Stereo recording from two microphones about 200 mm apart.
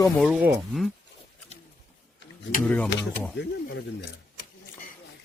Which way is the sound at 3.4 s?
60° left (ahead or behind).